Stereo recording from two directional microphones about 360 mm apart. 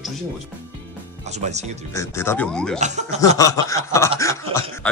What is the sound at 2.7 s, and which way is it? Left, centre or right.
Speech, centre.